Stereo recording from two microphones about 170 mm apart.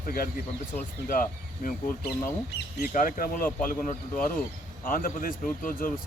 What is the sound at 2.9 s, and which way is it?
Speech, 55° left (ahead or behind).